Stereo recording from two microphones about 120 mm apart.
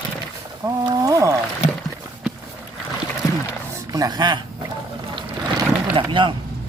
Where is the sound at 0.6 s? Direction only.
25° right (ahead or behind).